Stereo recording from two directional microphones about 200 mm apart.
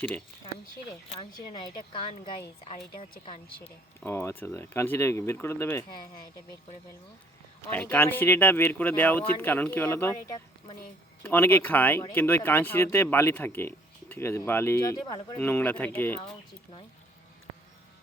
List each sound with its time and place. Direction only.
0.9 s a woman's voice: 25° left (ahead or behind)
3.6 s speech: 10° left (ahead or behind)
7.7 s speech: 10° left (ahead or behind)